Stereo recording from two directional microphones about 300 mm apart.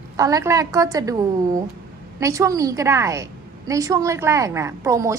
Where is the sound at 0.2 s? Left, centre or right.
Centre.